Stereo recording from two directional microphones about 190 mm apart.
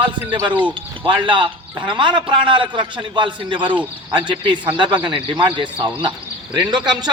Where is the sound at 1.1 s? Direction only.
25° right (ahead or behind).